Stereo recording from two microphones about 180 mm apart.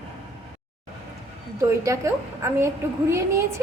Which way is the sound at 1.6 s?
15° right (ahead or behind).